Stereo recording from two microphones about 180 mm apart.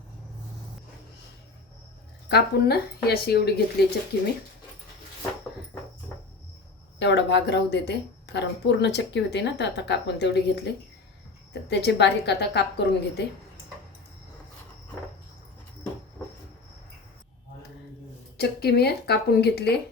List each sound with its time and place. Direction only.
2.3 s speech: 60° left (ahead or behind)
7.0 s speech: 75° left (ahead or behind)
11.7 s speech: 70° left (ahead or behind)
18.3 s speech: 60° left (ahead or behind)